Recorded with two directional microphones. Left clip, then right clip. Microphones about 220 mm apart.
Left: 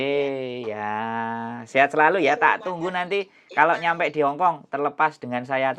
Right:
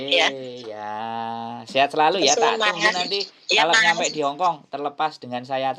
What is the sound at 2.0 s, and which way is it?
Speech, 5° right (ahead or behind).